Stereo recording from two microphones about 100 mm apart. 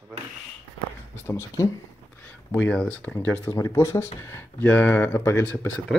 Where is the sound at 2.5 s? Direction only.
15° left (ahead or behind).